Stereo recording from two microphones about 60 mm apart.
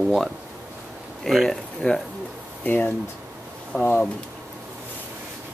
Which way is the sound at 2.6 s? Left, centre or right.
Left.